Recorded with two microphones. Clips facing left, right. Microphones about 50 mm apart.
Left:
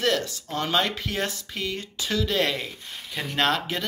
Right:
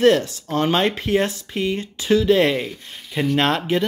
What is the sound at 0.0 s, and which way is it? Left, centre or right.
Speech, right.